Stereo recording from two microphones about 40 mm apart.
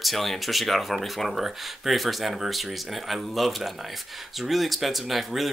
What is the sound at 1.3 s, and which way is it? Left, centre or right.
Speech, centre.